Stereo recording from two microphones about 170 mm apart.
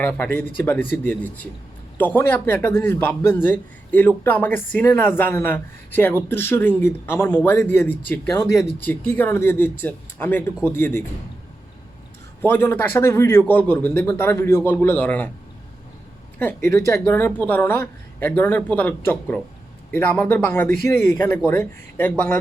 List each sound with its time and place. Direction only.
0.0 s a man's voice: 10° left (ahead or behind)
12.4 s a man's voice: 15° left (ahead or behind)
16.4 s a man's voice: 15° left (ahead or behind)